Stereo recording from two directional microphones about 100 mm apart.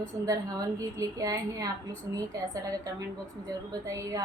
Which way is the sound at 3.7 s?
35° right (ahead or behind).